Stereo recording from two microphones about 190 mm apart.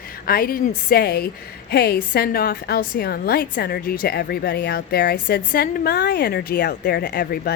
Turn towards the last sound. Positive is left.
turn(degrees=55)  # may be behind; listen again after turning